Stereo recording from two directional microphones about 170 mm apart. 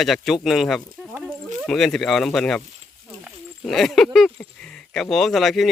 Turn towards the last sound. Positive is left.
turn(degrees=0)  # may be behind; listen again after turning